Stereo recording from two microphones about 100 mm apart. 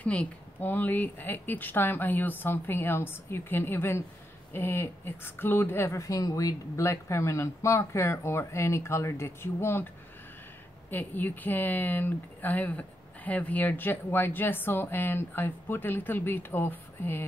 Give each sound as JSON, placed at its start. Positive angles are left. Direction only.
{"t": 0.0, "sound": "speech", "side_deg": 15}
{"t": 10.9, "sound": "speech", "side_deg": 20}